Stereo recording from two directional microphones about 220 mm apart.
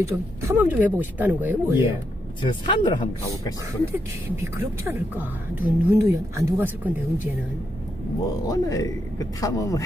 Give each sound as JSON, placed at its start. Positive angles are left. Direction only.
{"t": 0.0, "sound": "speech", "side_deg": -10}
{"t": 2.4, "sound": "speech", "side_deg": 20}
{"t": 3.8, "sound": "speech", "side_deg": -10}
{"t": 8.5, "sound": "speech", "side_deg": 15}